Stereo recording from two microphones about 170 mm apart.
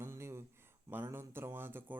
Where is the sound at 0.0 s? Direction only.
15° right (ahead or behind).